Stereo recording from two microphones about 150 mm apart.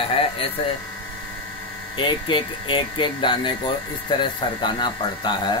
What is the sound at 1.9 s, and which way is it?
Speech, 35° left (ahead or behind).